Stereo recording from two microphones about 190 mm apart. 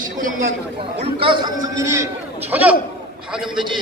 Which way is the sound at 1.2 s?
25° right (ahead or behind).